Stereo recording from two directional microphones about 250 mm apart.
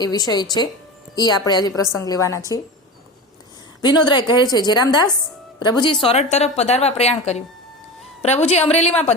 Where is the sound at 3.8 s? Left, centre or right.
Centre.